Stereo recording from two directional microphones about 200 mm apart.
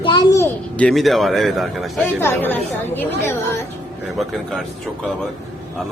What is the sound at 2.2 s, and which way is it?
A woman's voice, 10° left (ahead or behind).